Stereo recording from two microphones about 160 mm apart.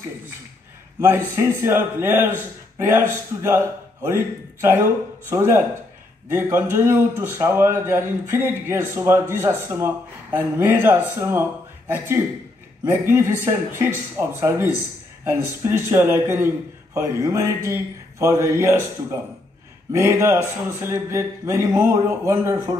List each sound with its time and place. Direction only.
1.0 s a man's voice: 15° right (ahead or behind)